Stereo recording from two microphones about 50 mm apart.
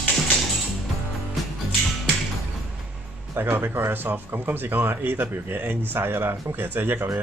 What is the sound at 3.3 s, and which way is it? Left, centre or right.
Speech, right.